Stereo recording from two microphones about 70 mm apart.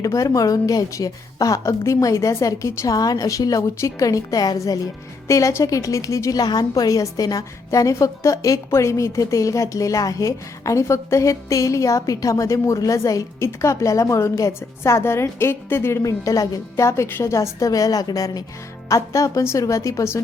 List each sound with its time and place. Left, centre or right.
0.0 s a woman's voice: left
2.8 s a woman's voice: left
5.3 s a woman's voice: left
6.3 s a woman's voice: left
13.4 s a woman's voice: left
18.9 s a woman's voice: left